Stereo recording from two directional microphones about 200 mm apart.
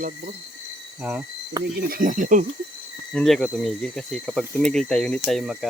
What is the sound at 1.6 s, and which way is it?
Speech, 20° right (ahead or behind).